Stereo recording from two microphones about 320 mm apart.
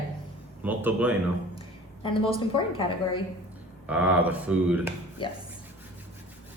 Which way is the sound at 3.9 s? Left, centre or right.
Centre.